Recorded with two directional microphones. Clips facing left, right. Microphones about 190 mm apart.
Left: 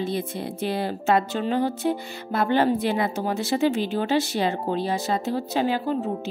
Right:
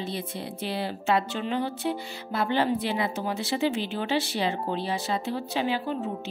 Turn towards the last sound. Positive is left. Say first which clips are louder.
# left 5 dB
turn(degrees=45)  # may be behind; listen again after turning